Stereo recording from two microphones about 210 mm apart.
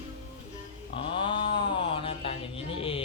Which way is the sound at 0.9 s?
25° left (ahead or behind).